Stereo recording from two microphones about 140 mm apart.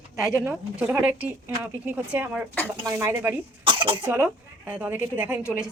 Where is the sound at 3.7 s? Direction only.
40° right (ahead or behind).